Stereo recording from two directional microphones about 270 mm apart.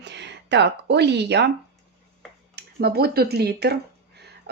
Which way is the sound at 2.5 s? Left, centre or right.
Right.